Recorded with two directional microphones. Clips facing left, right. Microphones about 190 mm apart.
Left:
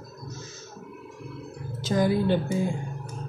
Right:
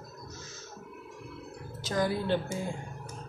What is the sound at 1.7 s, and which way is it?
Speech, 20° left (ahead or behind).